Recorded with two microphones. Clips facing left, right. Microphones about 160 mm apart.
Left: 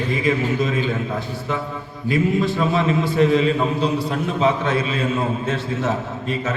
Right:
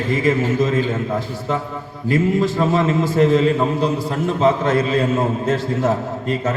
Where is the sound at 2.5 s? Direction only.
45° right (ahead or behind).